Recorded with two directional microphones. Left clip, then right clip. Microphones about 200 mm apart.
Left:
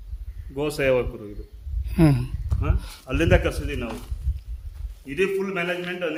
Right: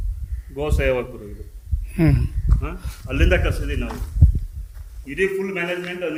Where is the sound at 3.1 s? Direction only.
35° left (ahead or behind).